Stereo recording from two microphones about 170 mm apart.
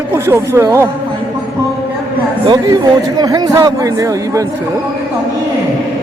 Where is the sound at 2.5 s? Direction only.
25° right (ahead or behind).